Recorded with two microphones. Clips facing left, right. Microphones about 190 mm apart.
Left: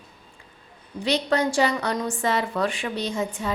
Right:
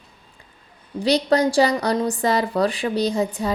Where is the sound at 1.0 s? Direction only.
35° right (ahead or behind).